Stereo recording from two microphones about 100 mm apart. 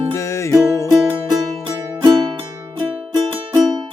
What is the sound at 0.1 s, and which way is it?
Music, 30° left (ahead or behind).